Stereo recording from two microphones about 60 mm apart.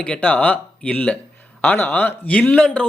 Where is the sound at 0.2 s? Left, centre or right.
Left.